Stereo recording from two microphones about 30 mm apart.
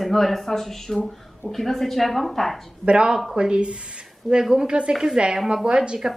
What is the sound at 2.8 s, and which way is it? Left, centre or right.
Speech, right.